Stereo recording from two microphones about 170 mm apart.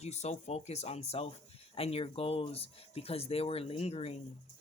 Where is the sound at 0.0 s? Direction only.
40° left (ahead or behind).